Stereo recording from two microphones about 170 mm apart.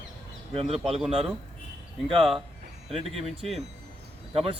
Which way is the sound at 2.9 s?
35° right (ahead or behind).